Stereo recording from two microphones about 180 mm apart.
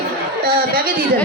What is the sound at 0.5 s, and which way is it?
Speech, 55° right (ahead or behind).